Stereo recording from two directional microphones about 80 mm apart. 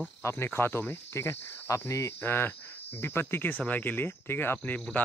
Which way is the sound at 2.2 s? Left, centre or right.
Left.